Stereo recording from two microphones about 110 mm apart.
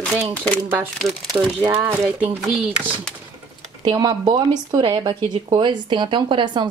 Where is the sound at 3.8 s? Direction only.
40° right (ahead or behind).